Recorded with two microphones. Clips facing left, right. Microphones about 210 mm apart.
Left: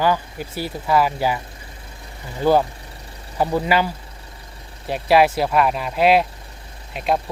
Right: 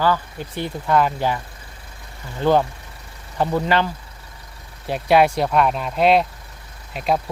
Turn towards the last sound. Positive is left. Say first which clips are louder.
# even
turn(degrees=0)  # may be behind; listen again after turning